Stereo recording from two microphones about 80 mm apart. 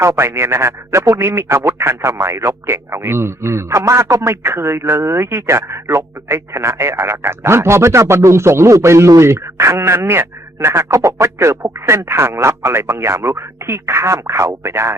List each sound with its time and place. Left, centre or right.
0.0 s speech: right